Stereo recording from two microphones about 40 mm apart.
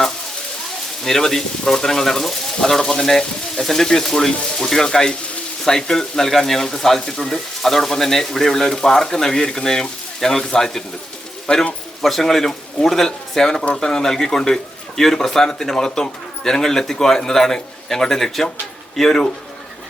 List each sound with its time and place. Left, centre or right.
1.0 s a man's voice: centre
11.5 s a man's voice: left
12.0 s a man's voice: centre